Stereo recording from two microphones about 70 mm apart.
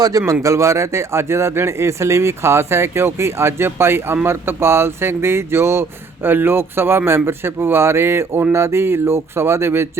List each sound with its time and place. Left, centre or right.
0.0 s a man's voice: right